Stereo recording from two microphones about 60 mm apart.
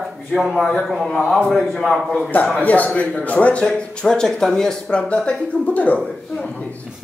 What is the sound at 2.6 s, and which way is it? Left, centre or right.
Speech, left.